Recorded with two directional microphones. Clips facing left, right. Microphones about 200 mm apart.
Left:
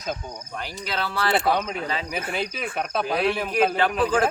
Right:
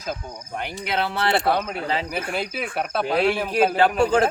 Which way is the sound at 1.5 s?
5° right (ahead or behind).